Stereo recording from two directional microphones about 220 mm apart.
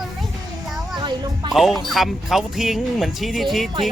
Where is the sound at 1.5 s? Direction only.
Centre (ahead or behind).